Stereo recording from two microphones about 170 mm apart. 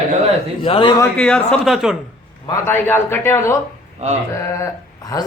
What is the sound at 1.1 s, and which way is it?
Speech, 5° left (ahead or behind).